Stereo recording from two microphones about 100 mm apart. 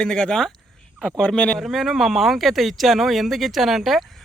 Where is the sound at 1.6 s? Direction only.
Centre (ahead or behind).